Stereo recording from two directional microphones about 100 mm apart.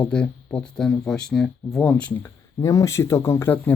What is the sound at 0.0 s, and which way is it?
Speech, 10° left (ahead or behind).